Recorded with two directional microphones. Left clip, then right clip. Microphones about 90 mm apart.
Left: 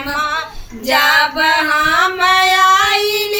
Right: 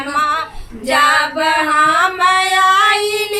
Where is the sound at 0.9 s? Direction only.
30° right (ahead or behind).